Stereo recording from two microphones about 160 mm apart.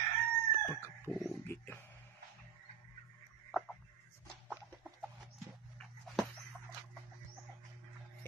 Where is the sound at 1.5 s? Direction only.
15° left (ahead or behind).